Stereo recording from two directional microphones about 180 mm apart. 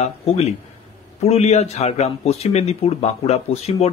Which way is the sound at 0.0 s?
35° left (ahead or behind).